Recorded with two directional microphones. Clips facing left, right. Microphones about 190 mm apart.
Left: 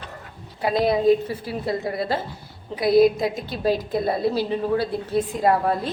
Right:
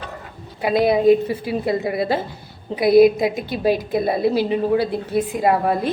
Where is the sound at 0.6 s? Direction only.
10° right (ahead or behind).